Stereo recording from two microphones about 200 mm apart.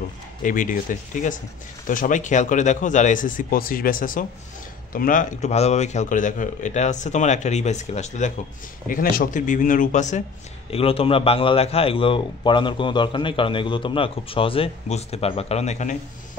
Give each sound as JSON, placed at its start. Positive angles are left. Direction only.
{"t": 0.4, "sound": "a man's voice", "side_deg": 40}